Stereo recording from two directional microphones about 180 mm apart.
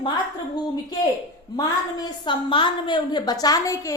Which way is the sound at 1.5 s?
20° left (ahead or behind).